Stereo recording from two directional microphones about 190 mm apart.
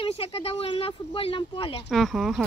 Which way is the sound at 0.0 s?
30° left (ahead or behind).